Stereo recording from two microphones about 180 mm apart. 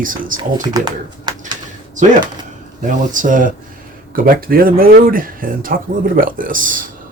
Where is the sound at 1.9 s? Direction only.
45° right (ahead or behind).